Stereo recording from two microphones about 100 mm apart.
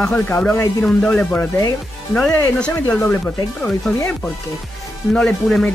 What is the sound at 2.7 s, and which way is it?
Speech, 20° left (ahead or behind).